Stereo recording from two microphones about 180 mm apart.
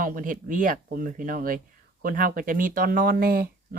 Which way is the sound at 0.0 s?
50° right (ahead or behind).